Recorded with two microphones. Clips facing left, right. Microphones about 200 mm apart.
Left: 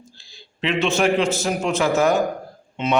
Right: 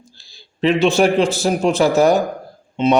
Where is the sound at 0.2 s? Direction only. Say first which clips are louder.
Right 8 dB; 35° right (ahead or behind).